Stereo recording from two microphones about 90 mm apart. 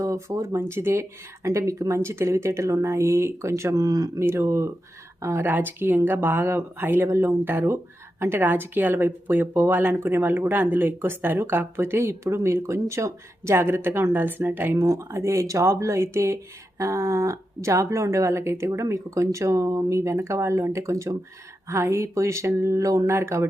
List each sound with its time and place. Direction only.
0.0 s speech: 35° right (ahead or behind)
14.8 s speech: 35° right (ahead or behind)